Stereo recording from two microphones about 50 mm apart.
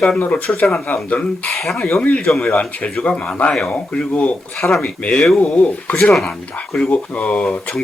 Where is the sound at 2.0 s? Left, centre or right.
Left.